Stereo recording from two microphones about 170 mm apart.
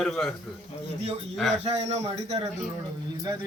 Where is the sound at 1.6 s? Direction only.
40° right (ahead or behind).